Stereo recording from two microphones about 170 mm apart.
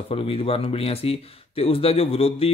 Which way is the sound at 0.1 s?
35° left (ahead or behind).